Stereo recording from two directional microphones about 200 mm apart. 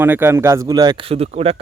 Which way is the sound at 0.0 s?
10° right (ahead or behind).